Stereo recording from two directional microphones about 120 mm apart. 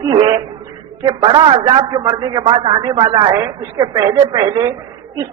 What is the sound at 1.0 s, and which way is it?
A man's voice, 40° right (ahead or behind).